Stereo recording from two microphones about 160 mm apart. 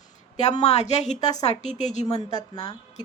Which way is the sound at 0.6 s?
45° left (ahead or behind).